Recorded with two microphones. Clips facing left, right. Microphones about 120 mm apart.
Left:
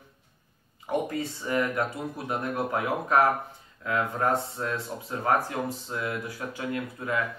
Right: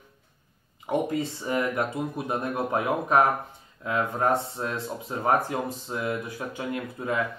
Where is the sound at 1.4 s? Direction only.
20° right (ahead or behind).